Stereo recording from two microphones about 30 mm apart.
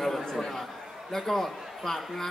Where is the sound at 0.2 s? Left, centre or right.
Centre.